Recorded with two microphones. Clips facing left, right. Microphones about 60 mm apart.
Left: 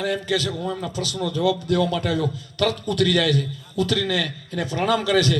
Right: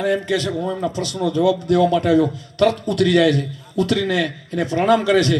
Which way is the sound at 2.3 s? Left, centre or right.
Right.